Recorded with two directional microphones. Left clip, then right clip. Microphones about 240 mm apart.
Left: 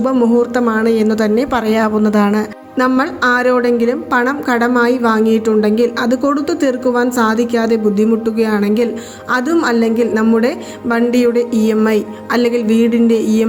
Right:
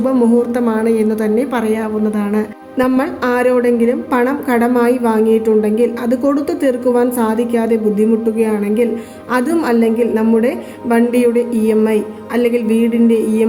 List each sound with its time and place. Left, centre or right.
0.0 s a woman's voice: centre